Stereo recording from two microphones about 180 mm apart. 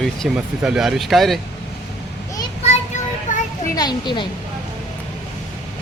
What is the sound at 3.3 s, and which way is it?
Children playing, 45° left (ahead or behind).